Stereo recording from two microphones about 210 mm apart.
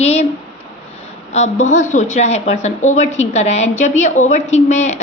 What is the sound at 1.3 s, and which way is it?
A woman's voice, 35° left (ahead or behind).